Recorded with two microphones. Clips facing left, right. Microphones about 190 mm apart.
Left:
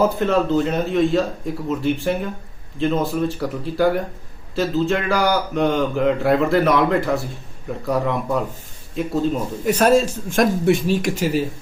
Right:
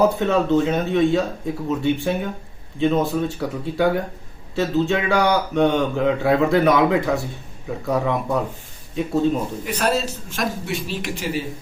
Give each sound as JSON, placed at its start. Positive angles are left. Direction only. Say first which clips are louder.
{"t": 0.0, "sound": "speech", "louder": "even", "side_deg": 0}
{"t": 9.6, "sound": "a man's voice", "louder": "left 8 dB", "side_deg": 45}